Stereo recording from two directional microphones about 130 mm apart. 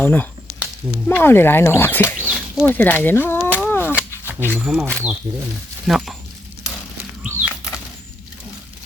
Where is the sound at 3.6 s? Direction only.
15° left (ahead or behind).